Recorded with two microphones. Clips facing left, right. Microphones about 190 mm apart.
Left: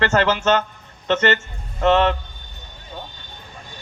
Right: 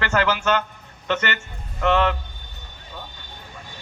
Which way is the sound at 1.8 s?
30° left (ahead or behind).